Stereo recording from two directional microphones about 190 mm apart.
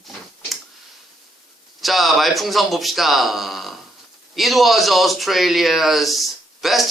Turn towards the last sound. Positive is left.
turn(degrees=0)  # may be behind; listen again after turning